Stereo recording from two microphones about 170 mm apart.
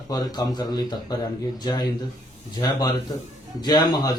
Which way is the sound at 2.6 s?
20° left (ahead or behind).